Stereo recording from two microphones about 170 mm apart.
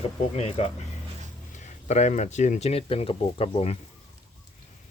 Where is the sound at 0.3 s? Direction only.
40° left (ahead or behind).